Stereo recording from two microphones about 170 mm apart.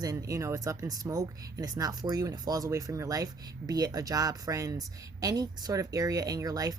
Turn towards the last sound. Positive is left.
turn(degrees=-20)  # may be behind; listen again after turning